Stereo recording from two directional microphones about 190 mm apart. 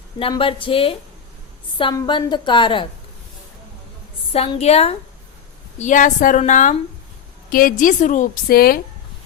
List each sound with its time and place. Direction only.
0.2 s a woman's voice: 30° left (ahead or behind)
4.3 s a woman's voice: 30° left (ahead or behind); by 8.8 s 55° left (ahead or behind)